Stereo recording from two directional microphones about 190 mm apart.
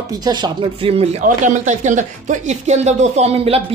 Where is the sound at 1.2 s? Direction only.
40° right (ahead or behind).